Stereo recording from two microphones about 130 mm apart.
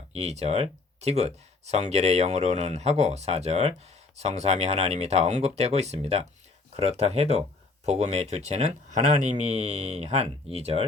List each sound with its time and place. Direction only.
0.1 s speech: 55° right (ahead or behind)